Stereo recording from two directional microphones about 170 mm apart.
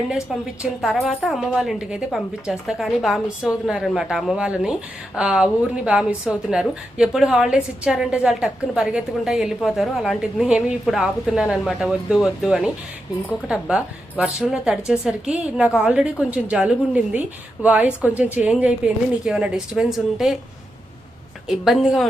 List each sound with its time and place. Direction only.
0.8 s a woman's voice: centre (ahead or behind)
21.4 s a woman's voice: centre (ahead or behind)